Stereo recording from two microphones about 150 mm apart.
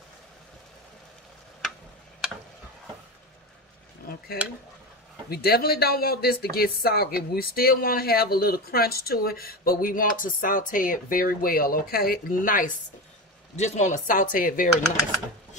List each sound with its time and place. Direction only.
5.3 s speech: 90° left; by 12.7 s 65° left (ahead or behind)
13.6 s speech: 50° left (ahead or behind); by 14.7 s 65° left (ahead or behind)